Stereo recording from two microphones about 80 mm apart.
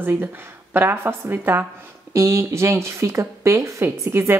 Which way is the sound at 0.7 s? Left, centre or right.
Right.